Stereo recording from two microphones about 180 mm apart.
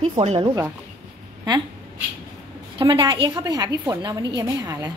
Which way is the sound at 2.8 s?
25° right (ahead or behind).